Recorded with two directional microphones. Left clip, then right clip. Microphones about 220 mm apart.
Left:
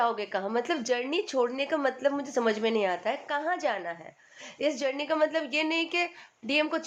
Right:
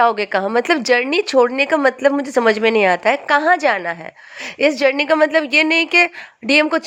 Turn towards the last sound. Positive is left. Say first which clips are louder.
# right 13 dB
turn(degrees=-40)  # may be behind; listen again after turning